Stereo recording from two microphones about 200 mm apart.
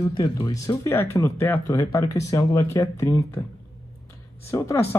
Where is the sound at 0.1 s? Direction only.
25° left (ahead or behind).